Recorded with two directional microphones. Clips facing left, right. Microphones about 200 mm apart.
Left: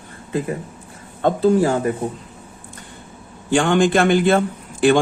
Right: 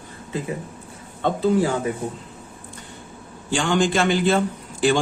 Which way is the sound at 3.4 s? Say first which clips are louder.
Left 5 dB; 55° left (ahead or behind).